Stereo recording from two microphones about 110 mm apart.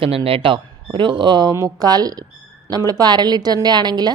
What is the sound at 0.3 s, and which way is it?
Speech, 55° right (ahead or behind).